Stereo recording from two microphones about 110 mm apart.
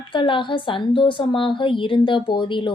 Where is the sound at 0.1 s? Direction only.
50° left (ahead or behind).